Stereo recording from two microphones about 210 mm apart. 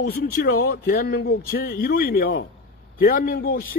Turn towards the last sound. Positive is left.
turn(degrees=45)  # may be behind; listen again after turning